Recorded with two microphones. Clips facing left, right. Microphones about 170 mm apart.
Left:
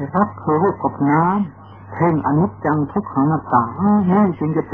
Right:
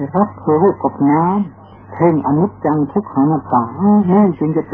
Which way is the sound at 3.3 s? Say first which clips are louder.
Right 3 dB; 15° right (ahead or behind).